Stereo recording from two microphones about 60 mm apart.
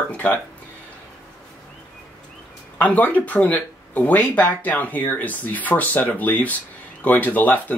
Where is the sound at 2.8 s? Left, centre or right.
Left.